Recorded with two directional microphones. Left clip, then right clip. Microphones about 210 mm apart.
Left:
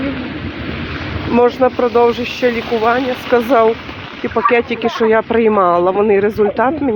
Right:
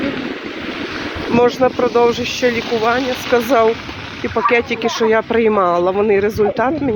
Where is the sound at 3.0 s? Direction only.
45° left (ahead or behind).